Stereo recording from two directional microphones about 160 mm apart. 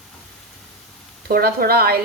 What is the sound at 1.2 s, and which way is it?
Speech, 70° right (ahead or behind).